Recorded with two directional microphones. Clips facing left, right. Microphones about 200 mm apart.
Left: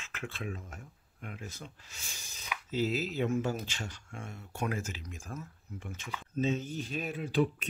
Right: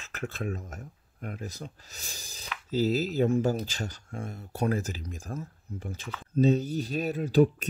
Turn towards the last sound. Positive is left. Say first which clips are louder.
# right 7 dB
turn(degrees=-40)  # may be behind; listen again after turning